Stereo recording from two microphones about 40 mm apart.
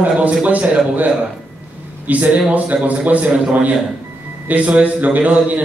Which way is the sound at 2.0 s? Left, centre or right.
Right.